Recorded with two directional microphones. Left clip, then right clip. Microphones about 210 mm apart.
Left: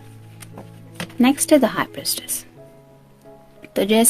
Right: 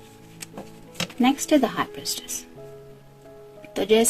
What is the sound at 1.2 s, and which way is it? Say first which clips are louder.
A woman's voice: left 5 dB; 50° left (ahead or behind).